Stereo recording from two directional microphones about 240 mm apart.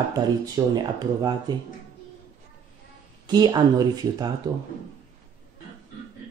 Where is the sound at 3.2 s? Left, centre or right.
Centre.